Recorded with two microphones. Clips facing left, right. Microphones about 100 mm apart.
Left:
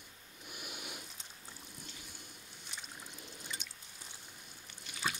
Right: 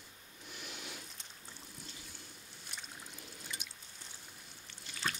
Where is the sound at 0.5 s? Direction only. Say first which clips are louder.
Left 1 dB; 10° left (ahead or behind).